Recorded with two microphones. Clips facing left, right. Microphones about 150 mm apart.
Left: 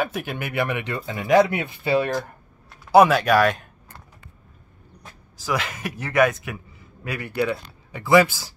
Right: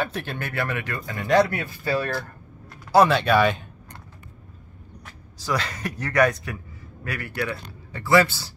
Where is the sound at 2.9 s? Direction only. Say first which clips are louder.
Left 2 dB; 5° left (ahead or behind).